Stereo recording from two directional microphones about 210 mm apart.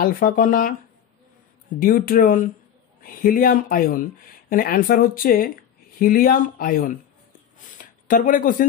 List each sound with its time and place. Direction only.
0.0 s speech: 45° left (ahead or behind)
1.8 s speech: 45° left (ahead or behind)